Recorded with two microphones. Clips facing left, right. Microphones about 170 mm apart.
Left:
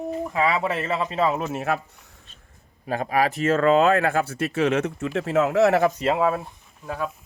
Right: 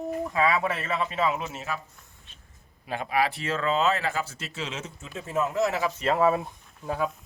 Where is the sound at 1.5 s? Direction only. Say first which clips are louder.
Left 9 dB; 60° left (ahead or behind).